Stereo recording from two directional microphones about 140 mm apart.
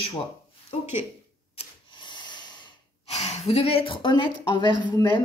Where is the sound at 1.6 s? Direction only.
35° left (ahead or behind).